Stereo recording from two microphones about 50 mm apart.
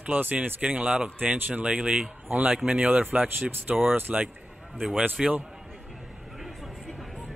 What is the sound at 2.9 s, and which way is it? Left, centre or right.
A man's voice, right.